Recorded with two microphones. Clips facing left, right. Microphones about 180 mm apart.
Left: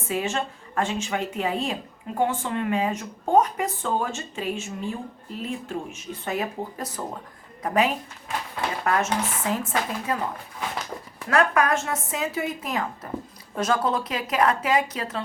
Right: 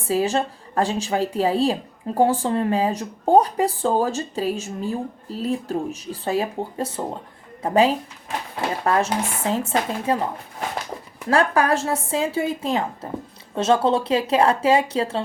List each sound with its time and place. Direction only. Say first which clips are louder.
0.1 s speech: right 6 dB; 35° right (ahead or behind)